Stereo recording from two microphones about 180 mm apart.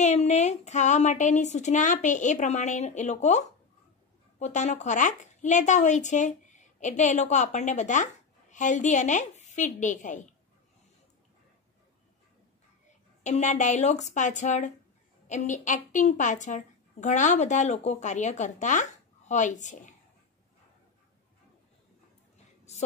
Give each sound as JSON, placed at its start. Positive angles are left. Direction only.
{"t": 0.0, "sound": "a woman's voice", "side_deg": 40}
{"t": 13.2, "sound": "a woman's voice", "side_deg": 40}